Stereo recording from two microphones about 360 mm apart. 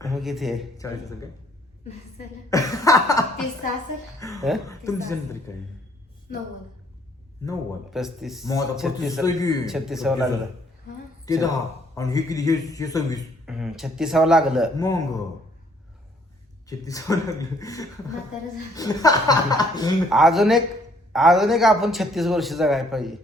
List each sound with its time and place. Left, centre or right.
0.0 s a man's voice: centre
2.1 s a man's voice: centre
7.4 s a man's voice: centre
9.2 s a man's voice: centre
9.6 s a man's voice: centre
11.3 s a man's voice: centre
13.4 s a man's voice: centre
14.8 s a man's voice: centre
16.6 s a man's voice: centre
20.1 s a man's voice: centre